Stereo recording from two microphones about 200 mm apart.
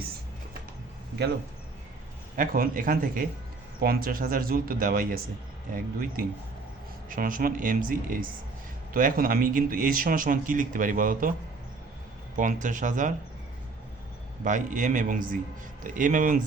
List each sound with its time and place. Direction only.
2.3 s a man's voice: 45° right (ahead or behind)
12.4 s a man's voice: 40° right (ahead or behind)
14.4 s a man's voice: 40° right (ahead or behind)